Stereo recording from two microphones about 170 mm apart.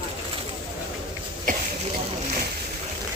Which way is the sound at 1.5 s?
50° right (ahead or behind).